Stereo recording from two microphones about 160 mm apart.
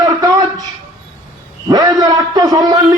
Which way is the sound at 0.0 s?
20° right (ahead or behind).